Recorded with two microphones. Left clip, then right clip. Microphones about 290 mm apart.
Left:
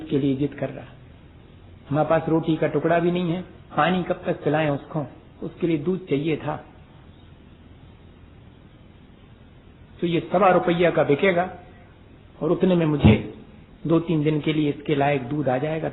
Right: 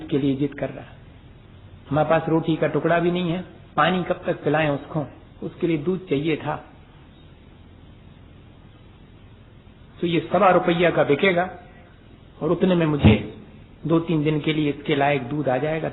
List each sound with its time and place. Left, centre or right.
0.1 s a man's voice: left
1.9 s a man's voice: left
10.0 s a man's voice: left